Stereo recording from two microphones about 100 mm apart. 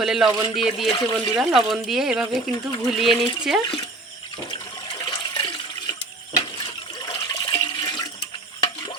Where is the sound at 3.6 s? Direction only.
50° left (ahead or behind).